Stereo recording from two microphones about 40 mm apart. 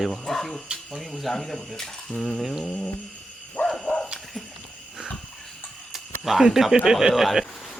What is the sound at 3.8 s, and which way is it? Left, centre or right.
Dog, left.